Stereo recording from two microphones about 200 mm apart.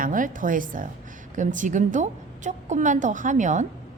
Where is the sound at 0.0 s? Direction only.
40° right (ahead or behind).